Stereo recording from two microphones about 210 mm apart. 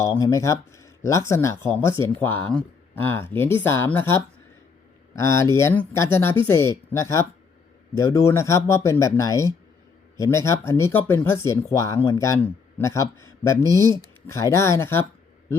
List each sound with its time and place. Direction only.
0.0 s speech: 15° left (ahead or behind)